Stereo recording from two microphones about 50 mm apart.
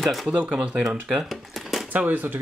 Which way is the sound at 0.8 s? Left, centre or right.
Centre.